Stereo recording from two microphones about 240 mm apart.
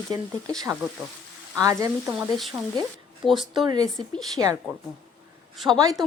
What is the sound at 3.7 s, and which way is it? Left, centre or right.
Speech, centre.